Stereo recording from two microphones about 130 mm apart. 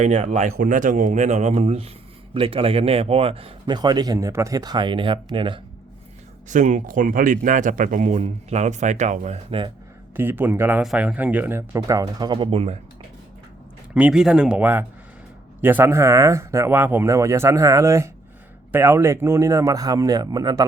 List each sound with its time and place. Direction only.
0.2 s speech: 75° right (ahead or behind); by 1.9 s 55° right (ahead or behind)
2.3 s speech: 45° right (ahead or behind)
6.5 s speech: 70° right (ahead or behind)
9.5 s speech: 40° right (ahead or behind)
10.2 s speech: 15° right (ahead or behind); by 12.8 s 50° right (ahead or behind)
13.9 s speech: 5° right (ahead or behind); by 20.7 s 30° right (ahead or behind)